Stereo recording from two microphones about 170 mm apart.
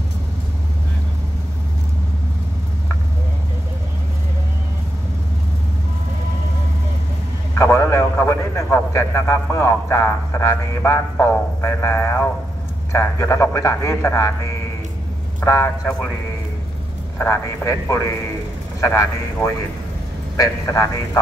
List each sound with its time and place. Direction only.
7.5 s a man's voice: 15° left (ahead or behind)
17.2 s a man's voice: 15° left (ahead or behind)